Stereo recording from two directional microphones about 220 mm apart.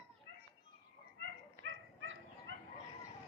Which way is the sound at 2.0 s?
65° right (ahead or behind).